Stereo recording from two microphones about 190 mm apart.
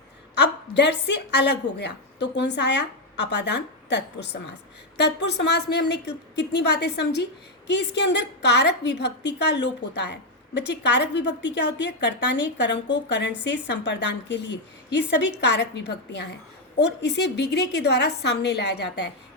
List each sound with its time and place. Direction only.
0.3 s a woman's voice: 65° left (ahead or behind)